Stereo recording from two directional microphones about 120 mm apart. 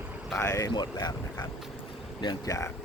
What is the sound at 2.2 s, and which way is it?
Speech, 35° left (ahead or behind).